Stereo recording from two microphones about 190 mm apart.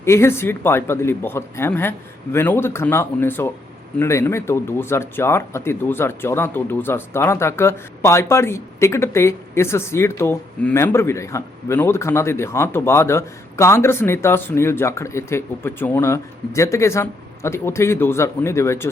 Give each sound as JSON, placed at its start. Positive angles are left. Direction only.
{"t": 0.0, "sound": "speech", "side_deg": 15}